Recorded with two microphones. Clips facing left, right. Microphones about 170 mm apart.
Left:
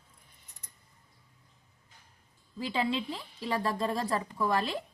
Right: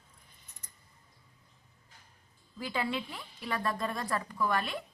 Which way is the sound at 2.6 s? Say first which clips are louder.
Left 3 dB; 25° left (ahead or behind).